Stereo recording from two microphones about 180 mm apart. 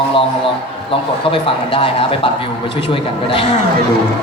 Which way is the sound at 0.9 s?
30° left (ahead or behind).